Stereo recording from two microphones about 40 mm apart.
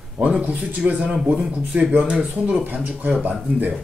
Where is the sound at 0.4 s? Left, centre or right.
Right.